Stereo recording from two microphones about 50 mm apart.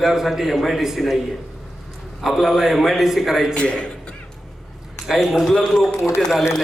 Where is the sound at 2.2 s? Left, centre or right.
Centre.